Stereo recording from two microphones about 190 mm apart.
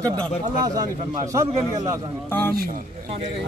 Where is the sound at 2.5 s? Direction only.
50° right (ahead or behind).